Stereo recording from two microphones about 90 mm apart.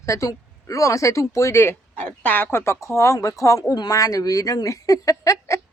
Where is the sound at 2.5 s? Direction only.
30° left (ahead or behind).